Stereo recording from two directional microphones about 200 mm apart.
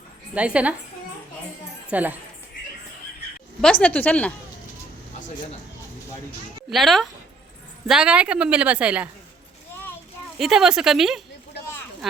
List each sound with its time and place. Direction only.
0.3 s a woman's voice: 5° right (ahead or behind)
1.9 s a woman's voice: 10° right (ahead or behind)
3.6 s a woman's voice: 5° left (ahead or behind)
6.7 s a woman's voice: centre (ahead or behind)
10.3 s a woman's voice: centre (ahead or behind)